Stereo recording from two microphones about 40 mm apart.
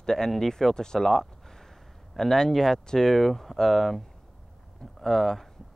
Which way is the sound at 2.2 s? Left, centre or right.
Centre.